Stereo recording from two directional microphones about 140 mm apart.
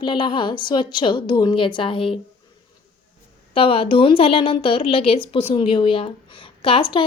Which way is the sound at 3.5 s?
40° left (ahead or behind).